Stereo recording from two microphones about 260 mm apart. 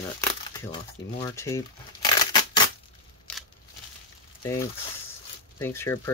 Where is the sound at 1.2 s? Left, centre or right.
Centre.